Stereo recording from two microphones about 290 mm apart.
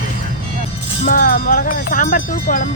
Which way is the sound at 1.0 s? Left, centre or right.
Left.